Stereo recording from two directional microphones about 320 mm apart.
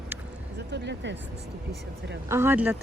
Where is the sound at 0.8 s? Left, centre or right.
Right.